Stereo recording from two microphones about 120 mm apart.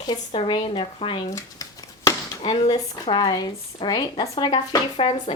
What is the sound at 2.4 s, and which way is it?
Speech, 45° left (ahead or behind).